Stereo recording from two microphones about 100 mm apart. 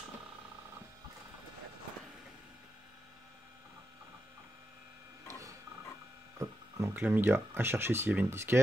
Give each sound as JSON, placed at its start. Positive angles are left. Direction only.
{"t": 6.3, "sound": "hum", "side_deg": -35}
{"t": 6.9, "sound": "speech", "side_deg": -20}